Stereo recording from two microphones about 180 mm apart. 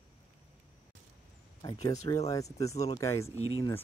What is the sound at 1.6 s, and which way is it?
Speech, 25° left (ahead or behind).